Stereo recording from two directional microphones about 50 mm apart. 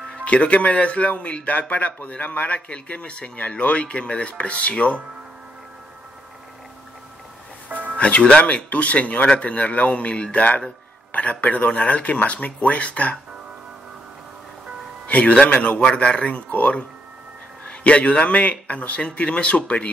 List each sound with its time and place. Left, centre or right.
0.1 s speech: left
7.7 s music: right
8.0 s speech: left
15.0 s a man's voice: left
15.8 s speech: left